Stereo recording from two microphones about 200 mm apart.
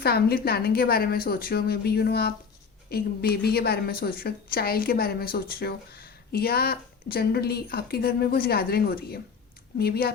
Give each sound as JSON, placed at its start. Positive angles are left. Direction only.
{"t": 0.0, "sound": "a woman's voice", "side_deg": 50}